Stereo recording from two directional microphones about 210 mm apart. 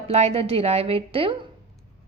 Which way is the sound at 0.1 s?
30° right (ahead or behind).